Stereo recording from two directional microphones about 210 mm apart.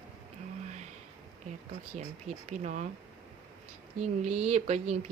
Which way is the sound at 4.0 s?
35° right (ahead or behind).